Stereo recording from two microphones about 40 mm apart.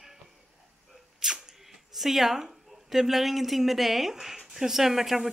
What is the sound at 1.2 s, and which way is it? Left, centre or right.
Sneeze, centre.